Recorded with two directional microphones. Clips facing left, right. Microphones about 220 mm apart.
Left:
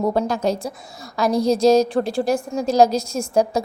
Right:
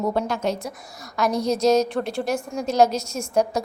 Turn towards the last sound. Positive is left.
turn(degrees=30)  # may be behind; listen again after turning